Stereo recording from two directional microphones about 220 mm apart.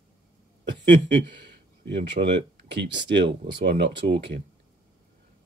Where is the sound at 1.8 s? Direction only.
50° right (ahead or behind).